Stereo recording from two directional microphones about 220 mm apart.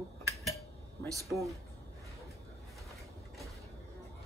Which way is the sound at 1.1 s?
15° right (ahead or behind).